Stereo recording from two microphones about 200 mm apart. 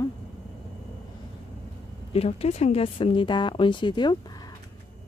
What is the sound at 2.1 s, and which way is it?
Speech, 30° left (ahead or behind).